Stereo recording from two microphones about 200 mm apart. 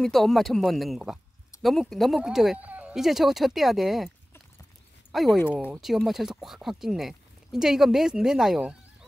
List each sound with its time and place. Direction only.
0.0 s speech: centre (ahead or behind)
5.1 s speech: centre (ahead or behind)